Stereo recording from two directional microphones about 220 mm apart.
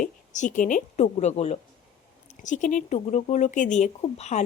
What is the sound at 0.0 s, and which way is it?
Speech, 35° left (ahead or behind).